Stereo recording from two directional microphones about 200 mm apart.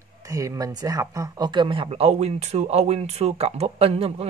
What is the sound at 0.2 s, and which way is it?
Speech, 15° right (ahead or behind).